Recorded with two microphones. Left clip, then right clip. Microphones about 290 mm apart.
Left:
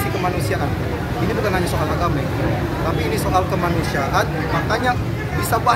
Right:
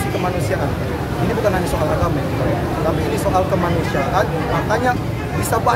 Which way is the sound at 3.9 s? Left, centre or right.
Centre.